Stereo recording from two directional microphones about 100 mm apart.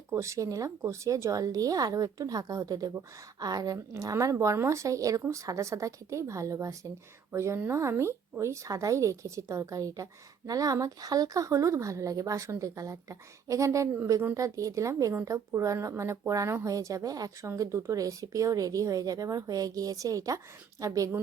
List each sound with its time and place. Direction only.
0.1 s speech: 30° right (ahead or behind)